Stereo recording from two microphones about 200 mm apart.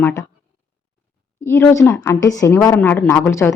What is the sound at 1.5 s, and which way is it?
A woman's voice, 15° left (ahead or behind).